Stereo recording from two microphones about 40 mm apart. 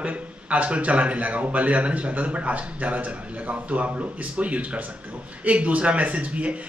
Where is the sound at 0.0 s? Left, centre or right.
Right.